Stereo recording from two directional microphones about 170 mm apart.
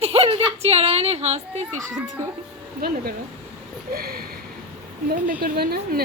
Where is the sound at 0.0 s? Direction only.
35° right (ahead or behind).